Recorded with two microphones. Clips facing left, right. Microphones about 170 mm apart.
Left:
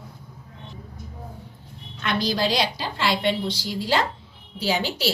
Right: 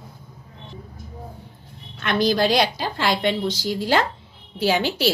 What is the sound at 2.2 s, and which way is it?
A woman's voice, 50° right (ahead or behind).